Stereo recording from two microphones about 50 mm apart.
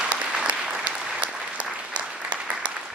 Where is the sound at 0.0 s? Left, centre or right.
Right.